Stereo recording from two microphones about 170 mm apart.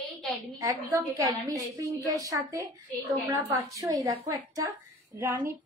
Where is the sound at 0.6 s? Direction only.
20° right (ahead or behind).